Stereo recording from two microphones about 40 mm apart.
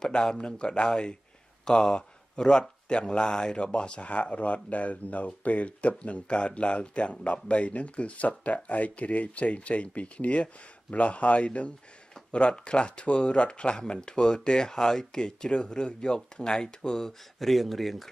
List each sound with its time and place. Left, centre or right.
0.0 s speech: centre
2.0 s a man's voice: left
17.5 s speech: centre